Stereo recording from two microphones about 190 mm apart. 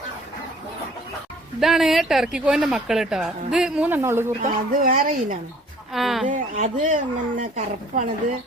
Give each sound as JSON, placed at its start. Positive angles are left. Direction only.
{"t": 1.5, "sound": "speech", "side_deg": 0}
{"t": 4.4, "sound": "speech", "side_deg": -45}
{"t": 5.9, "sound": "speech", "side_deg": 0}
{"t": 6.2, "sound": "speech", "side_deg": -40}